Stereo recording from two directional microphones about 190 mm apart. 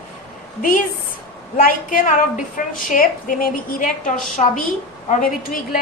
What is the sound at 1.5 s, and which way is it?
A woman's voice, 45° left (ahead or behind).